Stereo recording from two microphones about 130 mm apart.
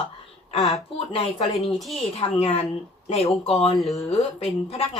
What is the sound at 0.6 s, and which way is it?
Speech, centre (ahead or behind).